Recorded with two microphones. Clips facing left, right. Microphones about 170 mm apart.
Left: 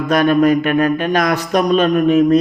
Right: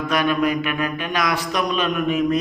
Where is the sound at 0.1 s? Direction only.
45° left (ahead or behind).